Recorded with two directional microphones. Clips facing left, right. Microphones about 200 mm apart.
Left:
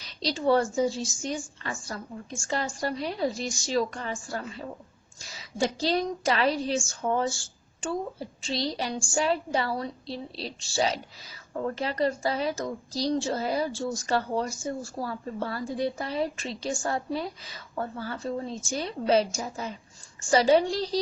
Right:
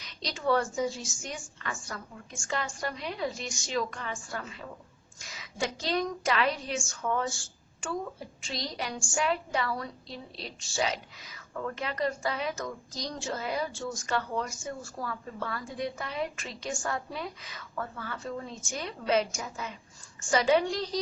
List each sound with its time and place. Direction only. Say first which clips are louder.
0.0 s a woman's voice: left 5 dB; 35° left (ahead or behind)